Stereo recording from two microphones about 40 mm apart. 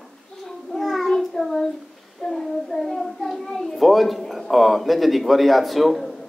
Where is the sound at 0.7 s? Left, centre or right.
Centre.